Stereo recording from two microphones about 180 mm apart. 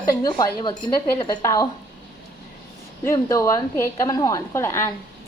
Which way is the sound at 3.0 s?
15° left (ahead or behind).